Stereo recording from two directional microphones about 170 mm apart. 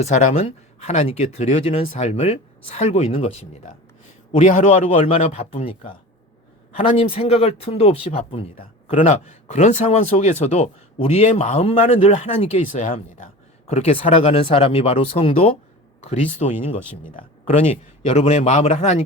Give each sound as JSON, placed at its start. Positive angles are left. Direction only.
{"t": 0.0, "sound": "speech", "side_deg": 40}
{"t": 17.5, "sound": "speech", "side_deg": 40}